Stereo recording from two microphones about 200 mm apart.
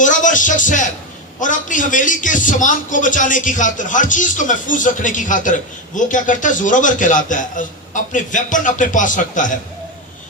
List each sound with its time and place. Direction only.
0.0 s a man's voice: 40° left (ahead or behind)